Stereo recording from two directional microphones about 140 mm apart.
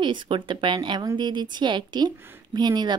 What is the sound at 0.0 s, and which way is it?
A woman's voice, 35° right (ahead or behind).